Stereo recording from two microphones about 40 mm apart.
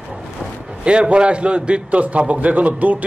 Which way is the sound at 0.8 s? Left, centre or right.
Right.